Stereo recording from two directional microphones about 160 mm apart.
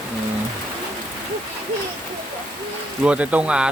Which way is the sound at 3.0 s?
10° right (ahead or behind).